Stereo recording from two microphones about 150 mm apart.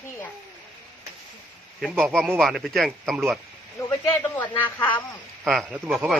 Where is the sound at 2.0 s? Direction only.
5° left (ahead or behind).